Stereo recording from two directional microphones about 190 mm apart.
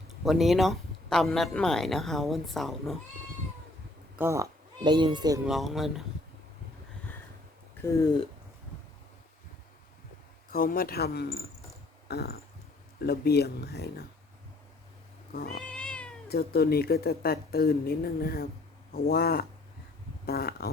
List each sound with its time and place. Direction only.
0.3 s speech: centre (ahead or behind)
4.2 s speech: 15° right (ahead or behind)
5.5 s speech: centre (ahead or behind)
7.8 s speech: 10° left (ahead or behind)
10.5 s speech: 50° left (ahead or behind)
15.3 s speech: 50° left (ahead or behind)
15.6 s cat: 5° left (ahead or behind)
16.3 s speech: 55° left (ahead or behind)